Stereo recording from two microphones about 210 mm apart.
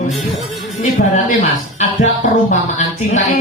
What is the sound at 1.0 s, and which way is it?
Speech, 45° left (ahead or behind).